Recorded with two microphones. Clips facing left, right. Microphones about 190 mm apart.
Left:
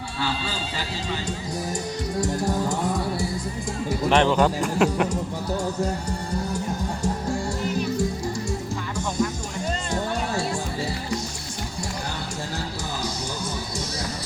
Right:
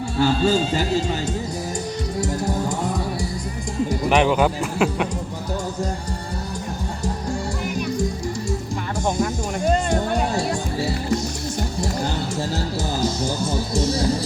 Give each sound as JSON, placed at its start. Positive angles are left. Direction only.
{"t": 0.2, "sound": "speech", "side_deg": -45}
{"t": 2.2, "sound": "music", "side_deg": 0}
{"t": 4.1, "sound": "speech", "side_deg": -10}
{"t": 9.0, "sound": "music", "side_deg": -55}
{"t": 13.5, "sound": "music", "side_deg": -25}